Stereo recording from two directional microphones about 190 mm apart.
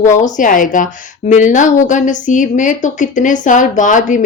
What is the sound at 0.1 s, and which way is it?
A woman's voice, 40° left (ahead or behind).